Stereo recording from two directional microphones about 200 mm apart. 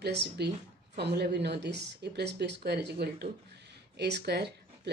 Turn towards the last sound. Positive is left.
turn(degrees=-55)  # may be behind; listen again after turning